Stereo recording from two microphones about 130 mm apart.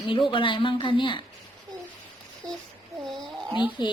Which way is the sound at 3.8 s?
35° left (ahead or behind).